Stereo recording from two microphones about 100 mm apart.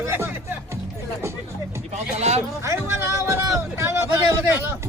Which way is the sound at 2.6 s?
25° right (ahead or behind).